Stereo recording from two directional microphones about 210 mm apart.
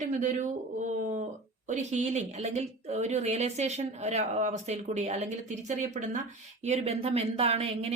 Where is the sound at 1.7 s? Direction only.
35° right (ahead or behind).